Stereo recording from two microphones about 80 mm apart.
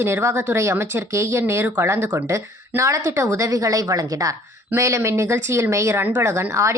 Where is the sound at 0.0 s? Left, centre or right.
Right.